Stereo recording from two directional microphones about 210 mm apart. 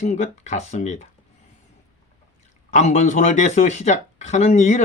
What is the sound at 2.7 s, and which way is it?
Speech, 35° left (ahead or behind).